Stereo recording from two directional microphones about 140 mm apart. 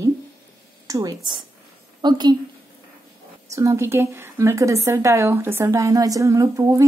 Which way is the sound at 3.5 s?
20° right (ahead or behind).